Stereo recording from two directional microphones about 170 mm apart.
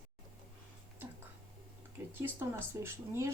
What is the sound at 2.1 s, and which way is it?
Speech, 10° right (ahead or behind).